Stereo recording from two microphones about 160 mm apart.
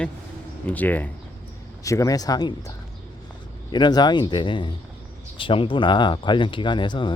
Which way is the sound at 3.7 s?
25° left (ahead or behind).